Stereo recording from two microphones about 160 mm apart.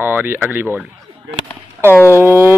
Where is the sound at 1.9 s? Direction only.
15° left (ahead or behind).